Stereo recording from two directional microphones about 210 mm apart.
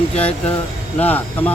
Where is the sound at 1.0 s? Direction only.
10° left (ahead or behind).